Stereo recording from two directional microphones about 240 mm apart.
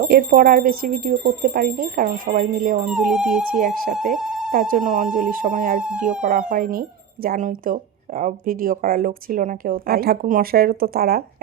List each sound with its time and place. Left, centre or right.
0.0 s speech: right
2.9 s speech: centre
4.5 s speech: right
5.8 s speech: centre
6.1 s speech: right